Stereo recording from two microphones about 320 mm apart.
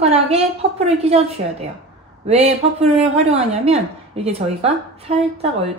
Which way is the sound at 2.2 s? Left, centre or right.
Centre.